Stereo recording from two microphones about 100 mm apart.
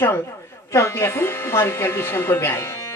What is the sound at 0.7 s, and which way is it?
Speech, 25° left (ahead or behind).